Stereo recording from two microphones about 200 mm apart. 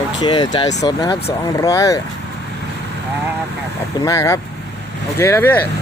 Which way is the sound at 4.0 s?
15° left (ahead or behind).